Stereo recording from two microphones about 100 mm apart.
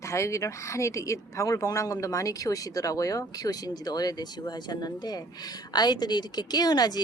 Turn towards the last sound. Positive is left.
turn(degrees=40)  # may be behind; listen again after turning